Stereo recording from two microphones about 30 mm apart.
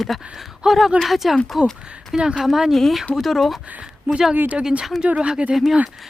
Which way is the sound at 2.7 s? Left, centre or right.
Centre.